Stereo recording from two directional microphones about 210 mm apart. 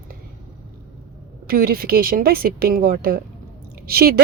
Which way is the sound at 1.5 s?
45° right (ahead or behind).